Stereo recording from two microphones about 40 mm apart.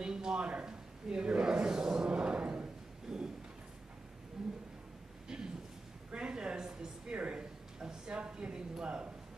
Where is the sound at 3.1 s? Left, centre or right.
Centre.